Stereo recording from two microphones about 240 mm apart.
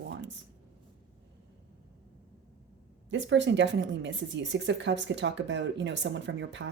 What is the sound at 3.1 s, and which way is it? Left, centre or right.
A woman's voice, right.